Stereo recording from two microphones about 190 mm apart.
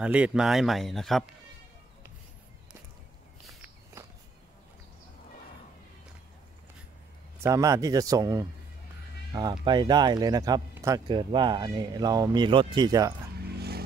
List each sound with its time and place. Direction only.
0.0 s speech: 5° right (ahead or behind)
4.0 s a sound: 15° right (ahead or behind)
7.4 s speech: 15° right (ahead or behind)
13.5 s music: 55° right (ahead or behind)